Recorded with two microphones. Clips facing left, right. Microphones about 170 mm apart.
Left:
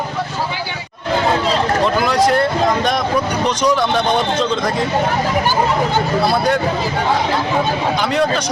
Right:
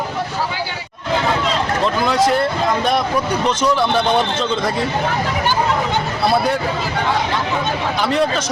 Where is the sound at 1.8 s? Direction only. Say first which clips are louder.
Even; centre (ahead or behind).